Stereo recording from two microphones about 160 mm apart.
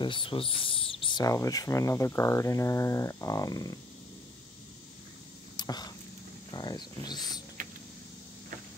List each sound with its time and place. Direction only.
0.0 s speech: 30° left (ahead or behind)
5.6 s a sound: 25° left (ahead or behind)
6.5 s speech: 25° left (ahead or behind)